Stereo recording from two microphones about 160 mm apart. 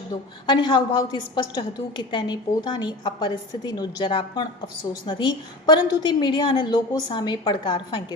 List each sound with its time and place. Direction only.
0.1 s a woman's voice: 30° left (ahead or behind)